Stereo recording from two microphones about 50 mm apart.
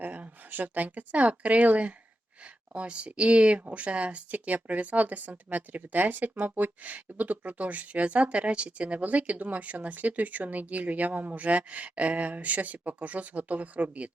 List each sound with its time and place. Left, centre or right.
0.0 s speech: right